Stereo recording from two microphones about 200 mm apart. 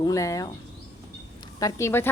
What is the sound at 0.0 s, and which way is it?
Speech, 15° left (ahead or behind).